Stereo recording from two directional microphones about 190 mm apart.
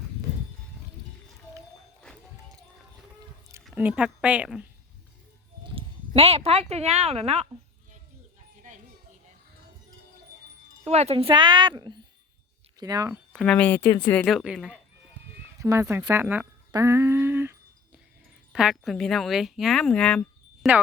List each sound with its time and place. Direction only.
3.6 s speech: 5° right (ahead or behind)
5.6 s speech: 30° right (ahead or behind)
10.8 s a woman's voice: 35° right (ahead or behind); by 13.1 s 20° right (ahead or behind)
13.3 s speech: 5° left (ahead or behind)
15.2 s run: 10° right (ahead or behind)
15.5 s speech: 15° right (ahead or behind)
18.5 s speech: centre (ahead or behind)